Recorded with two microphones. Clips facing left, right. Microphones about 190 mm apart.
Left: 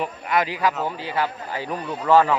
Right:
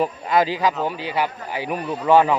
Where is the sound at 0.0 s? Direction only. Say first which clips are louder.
Right 4 dB; 30° right (ahead or behind).